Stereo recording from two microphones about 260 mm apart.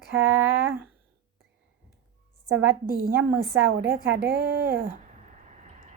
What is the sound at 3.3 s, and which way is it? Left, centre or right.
Speech, centre.